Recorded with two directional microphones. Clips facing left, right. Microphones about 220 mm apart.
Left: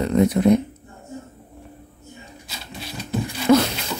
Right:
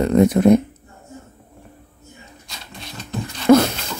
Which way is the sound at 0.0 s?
50° right (ahead or behind).